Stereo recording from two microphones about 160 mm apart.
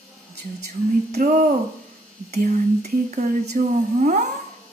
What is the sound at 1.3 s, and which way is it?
Speech, 50° right (ahead or behind).